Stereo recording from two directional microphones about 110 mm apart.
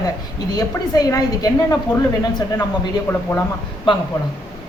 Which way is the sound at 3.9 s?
50° left (ahead or behind).